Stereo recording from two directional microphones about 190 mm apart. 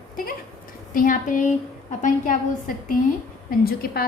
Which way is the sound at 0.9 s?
45° left (ahead or behind).